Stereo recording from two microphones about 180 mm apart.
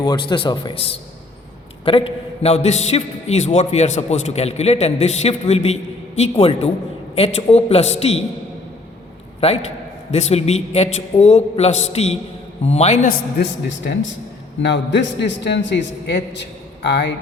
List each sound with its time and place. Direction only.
0.0 s a man's voice: 25° left (ahead or behind)
9.4 s a man's voice: 35° left (ahead or behind)
13.1 s a man's voice: 75° left (ahead or behind)